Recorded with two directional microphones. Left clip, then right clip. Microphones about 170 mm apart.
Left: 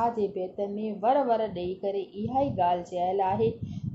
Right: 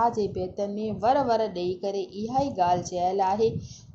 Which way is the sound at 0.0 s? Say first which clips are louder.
Right 2 dB; 35° right (ahead or behind).